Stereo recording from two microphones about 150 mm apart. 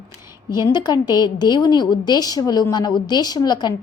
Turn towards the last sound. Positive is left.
turn(degrees=25)  # may be behind; listen again after turning